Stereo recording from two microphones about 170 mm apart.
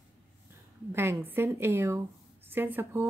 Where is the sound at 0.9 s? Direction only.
15° right (ahead or behind).